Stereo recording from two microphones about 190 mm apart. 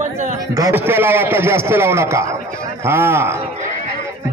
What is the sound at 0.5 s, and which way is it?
A man's voice, 15° right (ahead or behind).